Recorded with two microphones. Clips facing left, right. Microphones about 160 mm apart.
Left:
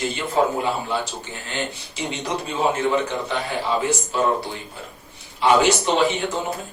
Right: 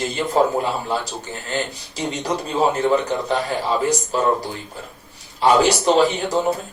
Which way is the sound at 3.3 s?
40° right (ahead or behind).